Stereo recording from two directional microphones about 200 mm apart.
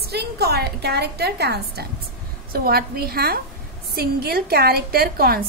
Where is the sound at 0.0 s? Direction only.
55° right (ahead or behind).